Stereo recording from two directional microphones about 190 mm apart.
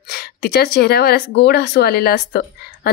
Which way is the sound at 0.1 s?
55° left (ahead or behind).